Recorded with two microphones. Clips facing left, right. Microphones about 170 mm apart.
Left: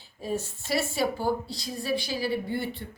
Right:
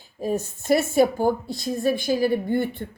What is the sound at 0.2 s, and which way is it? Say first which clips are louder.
Speech: right 6 dB; 45° right (ahead or behind).